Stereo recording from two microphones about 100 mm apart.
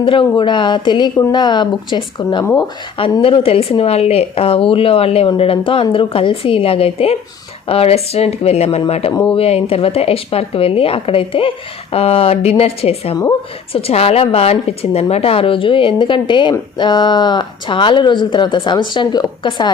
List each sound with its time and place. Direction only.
0.0 s speech: 55° left (ahead or behind); by 9.1 s 90° left
9.3 s a woman's voice: 80° left
15.1 s speech: 75° left (ahead or behind); by 19.7 s 50° left (ahead or behind)